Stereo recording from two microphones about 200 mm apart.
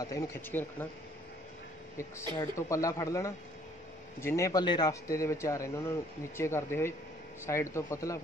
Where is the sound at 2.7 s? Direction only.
15° left (ahead or behind).